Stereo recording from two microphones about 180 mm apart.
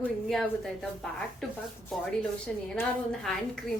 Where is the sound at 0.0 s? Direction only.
Centre (ahead or behind).